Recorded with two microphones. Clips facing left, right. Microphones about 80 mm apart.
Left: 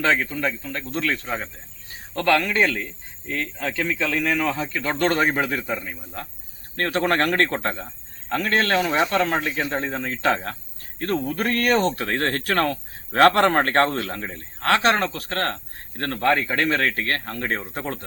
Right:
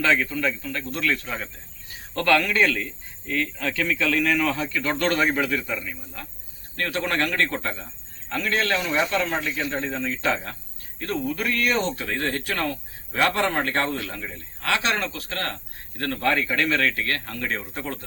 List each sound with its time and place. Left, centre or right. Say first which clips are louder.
0.0 s speech: even; left